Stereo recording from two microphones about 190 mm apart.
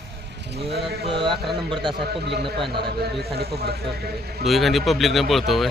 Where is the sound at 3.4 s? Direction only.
55° right (ahead or behind).